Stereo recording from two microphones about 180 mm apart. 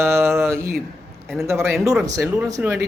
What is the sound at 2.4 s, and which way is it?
Speech, centre (ahead or behind).